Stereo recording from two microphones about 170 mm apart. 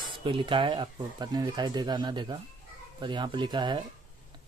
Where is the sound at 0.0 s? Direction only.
30° right (ahead or behind).